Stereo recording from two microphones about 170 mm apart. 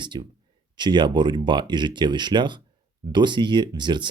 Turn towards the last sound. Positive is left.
turn(degrees=-25)  # may be behind; listen again after turning